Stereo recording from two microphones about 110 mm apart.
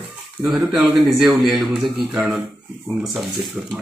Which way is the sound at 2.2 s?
15° right (ahead or behind).